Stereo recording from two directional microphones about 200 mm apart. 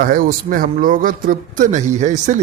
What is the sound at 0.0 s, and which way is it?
Speech, 45° right (ahead or behind).